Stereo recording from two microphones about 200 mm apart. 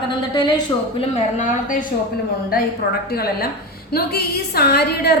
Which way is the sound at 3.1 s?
50° left (ahead or behind).